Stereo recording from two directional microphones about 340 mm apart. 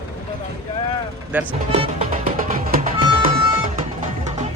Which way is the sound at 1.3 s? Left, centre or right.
Centre.